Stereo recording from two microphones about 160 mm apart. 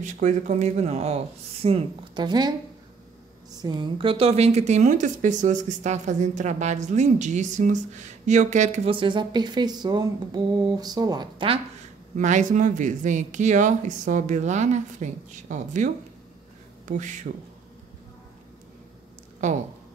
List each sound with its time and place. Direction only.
0.0 s speech: 50° right (ahead or behind); by 2.5 s 25° right (ahead or behind)
3.5 s a woman's voice: 25° right (ahead or behind)
12.2 s a woman's voice: 50° right (ahead or behind)